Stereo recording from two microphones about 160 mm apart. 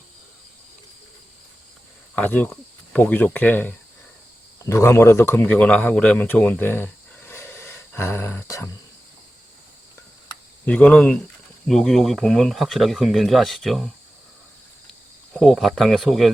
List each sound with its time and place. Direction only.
2.1 s speech: 10° left (ahead or behind)
10.7 s speech: 5° left (ahead or behind)
15.3 s speech: 5° left (ahead or behind)